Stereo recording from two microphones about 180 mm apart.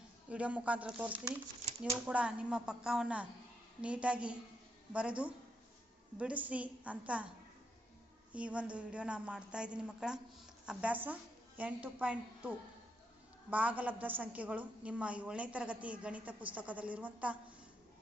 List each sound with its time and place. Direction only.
0.3 s a woman's voice: 5° right (ahead or behind)
8.3 s a woman's voice: 5° right (ahead or behind)